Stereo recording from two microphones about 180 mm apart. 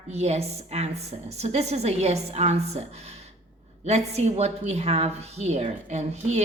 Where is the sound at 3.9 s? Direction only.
35° right (ahead or behind).